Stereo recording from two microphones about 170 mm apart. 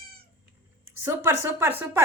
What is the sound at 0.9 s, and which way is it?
Speech, 15° right (ahead or behind).